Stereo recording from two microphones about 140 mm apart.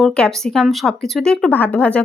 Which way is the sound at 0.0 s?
5° left (ahead or behind).